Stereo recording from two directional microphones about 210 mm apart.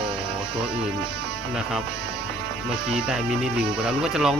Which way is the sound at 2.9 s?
5° right (ahead or behind).